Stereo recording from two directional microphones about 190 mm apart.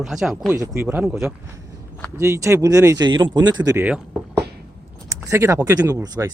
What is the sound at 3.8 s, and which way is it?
Speech, 5° right (ahead or behind).